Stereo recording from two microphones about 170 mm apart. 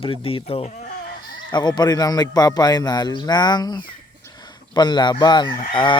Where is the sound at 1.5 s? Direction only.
25° left (ahead or behind).